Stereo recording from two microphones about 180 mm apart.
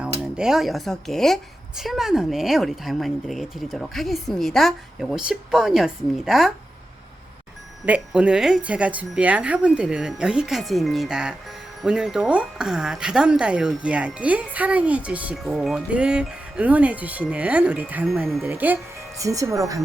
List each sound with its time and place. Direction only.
0.0 s speech: 5° right (ahead or behind)
7.9 s speech: 5° right (ahead or behind)